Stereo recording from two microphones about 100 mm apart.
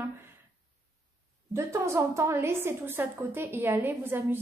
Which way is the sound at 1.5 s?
25° right (ahead or behind).